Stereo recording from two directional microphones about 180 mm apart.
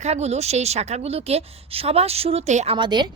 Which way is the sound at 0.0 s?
35° right (ahead or behind).